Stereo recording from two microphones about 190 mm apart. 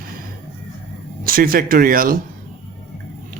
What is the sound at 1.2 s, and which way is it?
Speech, 50° right (ahead or behind).